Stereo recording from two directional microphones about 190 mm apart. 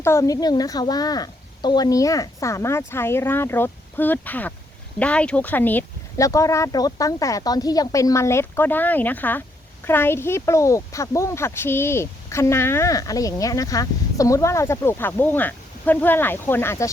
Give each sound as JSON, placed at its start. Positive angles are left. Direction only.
{"t": 0.0, "sound": "a woman's voice", "side_deg": 15}